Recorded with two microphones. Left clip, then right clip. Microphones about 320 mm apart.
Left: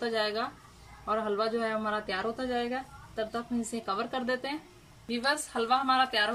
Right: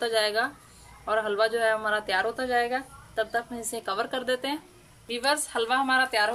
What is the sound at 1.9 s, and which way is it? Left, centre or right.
Speech, right.